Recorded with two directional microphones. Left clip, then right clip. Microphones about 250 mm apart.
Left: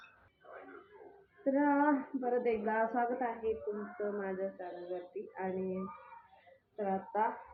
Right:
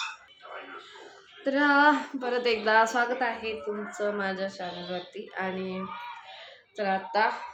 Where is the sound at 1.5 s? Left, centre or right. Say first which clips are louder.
Right 10 dB; centre.